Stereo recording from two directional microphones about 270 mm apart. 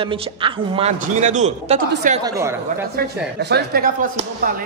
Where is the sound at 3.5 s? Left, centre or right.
Right.